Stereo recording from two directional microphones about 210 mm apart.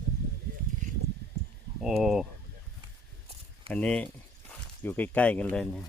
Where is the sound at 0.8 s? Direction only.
35° right (ahead or behind).